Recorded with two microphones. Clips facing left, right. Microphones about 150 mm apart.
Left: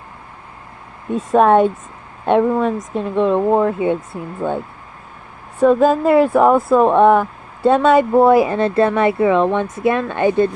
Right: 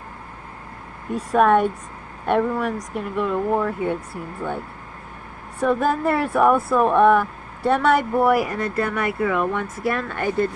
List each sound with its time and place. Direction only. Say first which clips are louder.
1.3 s speech: left 5 dB; 25° left (ahead or behind)